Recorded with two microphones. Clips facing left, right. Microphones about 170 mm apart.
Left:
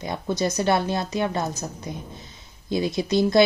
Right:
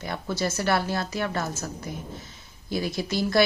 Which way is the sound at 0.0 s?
20° left (ahead or behind).